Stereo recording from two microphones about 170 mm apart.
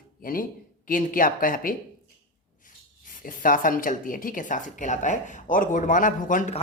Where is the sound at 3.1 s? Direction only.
55° left (ahead or behind).